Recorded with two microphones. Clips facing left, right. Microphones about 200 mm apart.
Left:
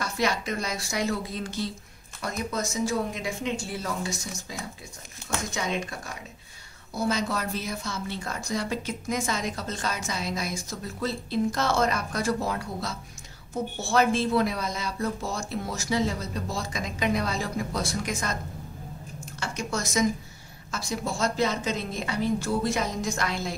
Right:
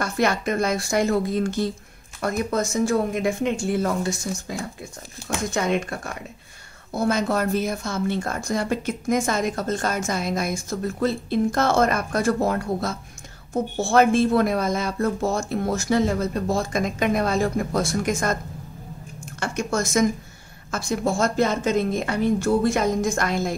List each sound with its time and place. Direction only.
0.0 s a woman's voice: 55° right (ahead or behind)
19.4 s a woman's voice: 50° right (ahead or behind)